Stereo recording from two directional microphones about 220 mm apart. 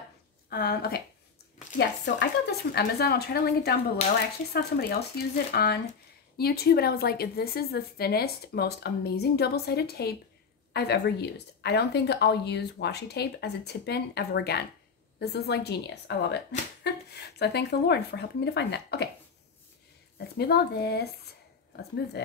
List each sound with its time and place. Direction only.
0.5 s speech: 45° left (ahead or behind)
20.2 s speech: 45° left (ahead or behind)